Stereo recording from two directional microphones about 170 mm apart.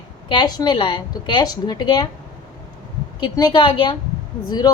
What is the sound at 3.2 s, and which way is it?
A woman's voice, 25° left (ahead or behind).